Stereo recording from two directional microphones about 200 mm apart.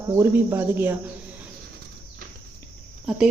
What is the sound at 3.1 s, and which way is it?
Speech, centre (ahead or behind).